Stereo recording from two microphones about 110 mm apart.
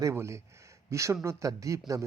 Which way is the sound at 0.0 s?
25° right (ahead or behind).